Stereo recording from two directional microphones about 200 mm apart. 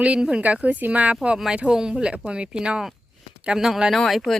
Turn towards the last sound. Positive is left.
turn(degrees=0)  # may be behind; listen again after turning